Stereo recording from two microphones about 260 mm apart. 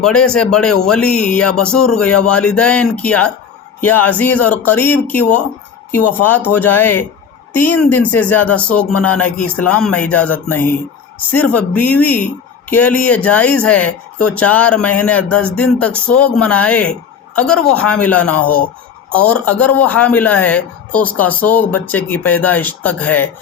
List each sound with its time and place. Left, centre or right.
0.0 s speech: centre
8.9 s speech: left
9.1 s speech: centre